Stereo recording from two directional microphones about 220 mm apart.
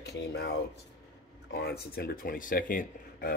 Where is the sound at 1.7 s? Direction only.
45° left (ahead or behind).